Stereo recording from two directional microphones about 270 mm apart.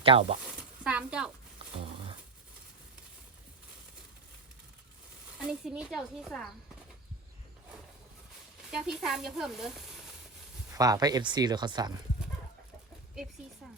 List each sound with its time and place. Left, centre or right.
0.0 s speech: right
0.4 s a sound: centre
5.4 s a woman's voice: centre
8.7 s a woman's voice: centre
10.7 s speech: centre